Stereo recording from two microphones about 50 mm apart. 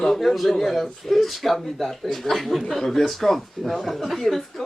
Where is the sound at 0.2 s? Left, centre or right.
Centre.